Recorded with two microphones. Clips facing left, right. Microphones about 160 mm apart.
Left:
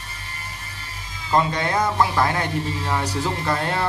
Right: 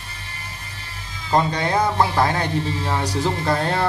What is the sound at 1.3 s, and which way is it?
Speech, 35° right (ahead or behind).